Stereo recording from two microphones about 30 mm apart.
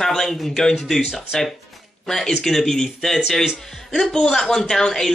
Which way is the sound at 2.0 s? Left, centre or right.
Centre.